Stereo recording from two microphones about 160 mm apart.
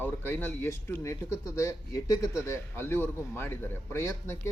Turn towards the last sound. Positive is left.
turn(degrees=15)  # may be behind; listen again after turning